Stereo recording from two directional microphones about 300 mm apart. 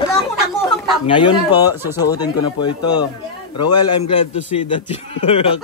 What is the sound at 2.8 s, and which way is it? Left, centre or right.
Speech, left.